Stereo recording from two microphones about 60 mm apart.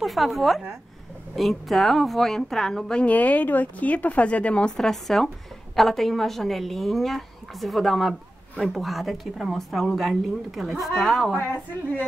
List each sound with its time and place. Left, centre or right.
0.0 s a woman's voice: centre
3.0 s speech: left
4.7 s a woman's voice: centre